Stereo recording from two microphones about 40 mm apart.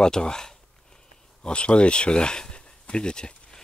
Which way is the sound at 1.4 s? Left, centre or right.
Left.